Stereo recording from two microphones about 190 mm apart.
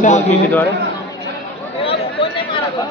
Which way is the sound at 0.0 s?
40° left (ahead or behind).